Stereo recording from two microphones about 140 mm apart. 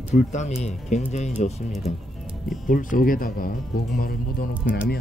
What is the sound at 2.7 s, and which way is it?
Speech, 75° left (ahead or behind).